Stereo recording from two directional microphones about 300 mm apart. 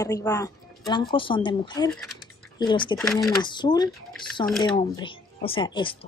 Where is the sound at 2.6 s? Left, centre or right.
Centre.